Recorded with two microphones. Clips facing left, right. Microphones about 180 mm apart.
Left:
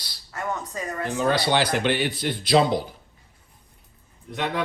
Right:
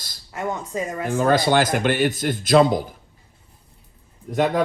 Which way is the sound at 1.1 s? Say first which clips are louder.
Right 4 dB; 50° right (ahead or behind).